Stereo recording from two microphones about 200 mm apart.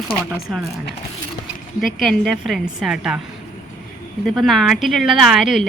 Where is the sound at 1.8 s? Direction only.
Centre (ahead or behind).